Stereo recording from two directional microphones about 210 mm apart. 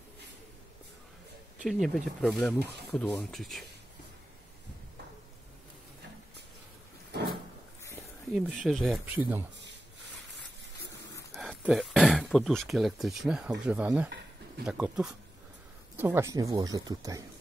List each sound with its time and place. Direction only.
1.6 s speech: centre (ahead or behind)
2.3 s speech: 10° left (ahead or behind)
7.1 s a sound: 50° right (ahead or behind)
8.3 s speech: centre (ahead or behind)
10.3 s a sound: 55° right (ahead or behind)
11.3 s speech: centre (ahead or behind); by 17.2 s 15° right (ahead or behind)